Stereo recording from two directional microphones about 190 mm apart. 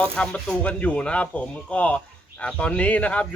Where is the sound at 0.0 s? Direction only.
5° left (ahead or behind).